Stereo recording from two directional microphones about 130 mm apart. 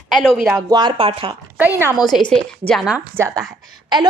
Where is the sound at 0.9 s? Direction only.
45° right (ahead or behind).